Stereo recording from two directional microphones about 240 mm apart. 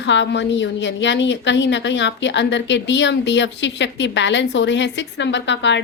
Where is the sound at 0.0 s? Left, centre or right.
Left.